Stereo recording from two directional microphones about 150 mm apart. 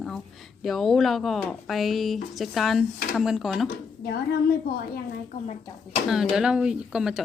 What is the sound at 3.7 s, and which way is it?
Speech, 90° left.